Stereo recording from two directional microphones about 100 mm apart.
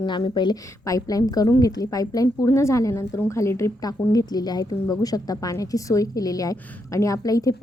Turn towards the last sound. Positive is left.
turn(degrees=35)  # may be behind; listen again after turning